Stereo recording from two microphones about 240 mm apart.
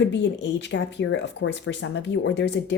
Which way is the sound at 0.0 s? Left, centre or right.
Left.